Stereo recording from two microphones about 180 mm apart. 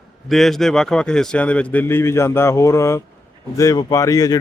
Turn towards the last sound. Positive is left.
turn(degrees=20)  # may be behind; listen again after turning